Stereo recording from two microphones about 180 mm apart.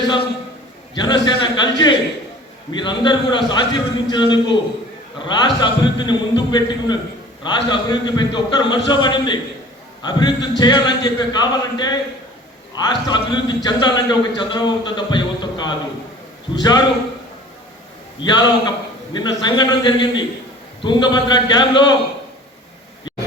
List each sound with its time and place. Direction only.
0.9 s a man's voice: 25° left (ahead or behind)
18.2 s a man's voice: 25° left (ahead or behind)